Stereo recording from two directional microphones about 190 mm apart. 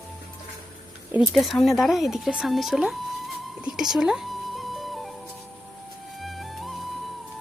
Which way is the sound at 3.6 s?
5° right (ahead or behind).